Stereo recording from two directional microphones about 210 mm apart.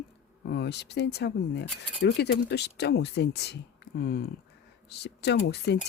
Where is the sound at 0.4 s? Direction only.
55° left (ahead or behind).